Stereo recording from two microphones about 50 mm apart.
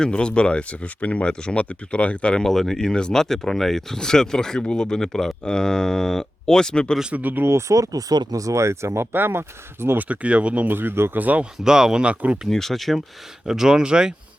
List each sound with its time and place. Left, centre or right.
0.0 s speech: centre
2.3 s speech: centre
7.1 s speech: right
7.4 s speech: right
8.4 s speech: right
9.1 s speech: right
10.0 s speech: right
10.7 s speech: right
11.2 s speech: right
11.6 s speech: centre
12.5 s speech: centre
13.5 s speech: centre